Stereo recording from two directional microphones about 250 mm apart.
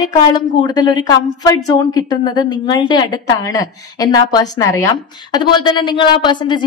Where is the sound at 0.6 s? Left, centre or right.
Centre.